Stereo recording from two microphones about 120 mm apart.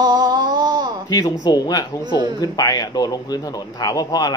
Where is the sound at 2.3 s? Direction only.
30° left (ahead or behind).